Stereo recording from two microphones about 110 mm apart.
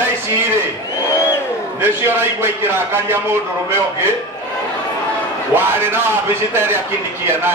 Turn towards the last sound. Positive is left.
turn(degrees=-20)  # may be behind; listen again after turning